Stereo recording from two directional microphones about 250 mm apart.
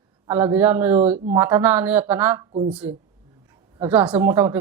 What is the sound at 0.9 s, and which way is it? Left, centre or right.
Speech, right.